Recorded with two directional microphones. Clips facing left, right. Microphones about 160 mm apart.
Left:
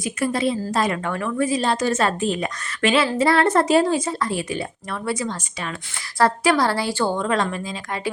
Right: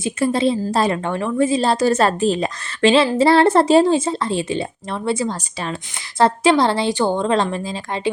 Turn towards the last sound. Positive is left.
turn(degrees=-30)  # may be behind; listen again after turning